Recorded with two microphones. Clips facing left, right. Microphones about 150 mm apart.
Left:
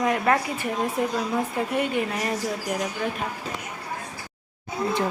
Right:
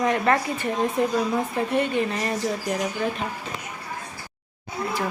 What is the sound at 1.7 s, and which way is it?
Speech, 10° left (ahead or behind).